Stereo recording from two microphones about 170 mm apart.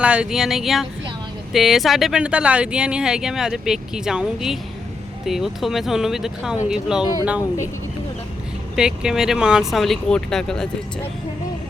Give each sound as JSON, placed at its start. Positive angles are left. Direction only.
{"t": 0.0, "sound": "speech", "side_deg": -5}
{"t": 7.0, "sound": "speech", "side_deg": 20}
{"t": 8.7, "sound": "speech", "side_deg": -5}